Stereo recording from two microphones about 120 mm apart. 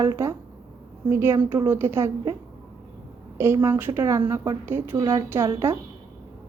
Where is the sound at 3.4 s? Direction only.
20° right (ahead or behind).